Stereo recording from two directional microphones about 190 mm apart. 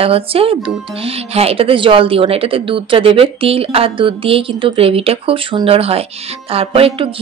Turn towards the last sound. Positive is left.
turn(degrees=-30)  # may be behind; listen again after turning